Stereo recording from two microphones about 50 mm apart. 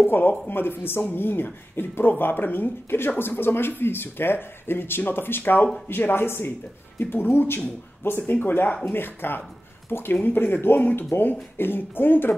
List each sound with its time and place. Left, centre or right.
0.0 s speech: left